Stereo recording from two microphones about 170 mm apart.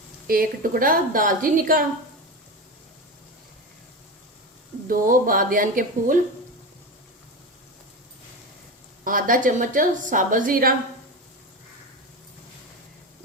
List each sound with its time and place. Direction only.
0.3 s a woman's voice: 60° right (ahead or behind)
4.9 s a woman's voice: 55° right (ahead or behind)
9.0 s a woman's voice: 55° right (ahead or behind)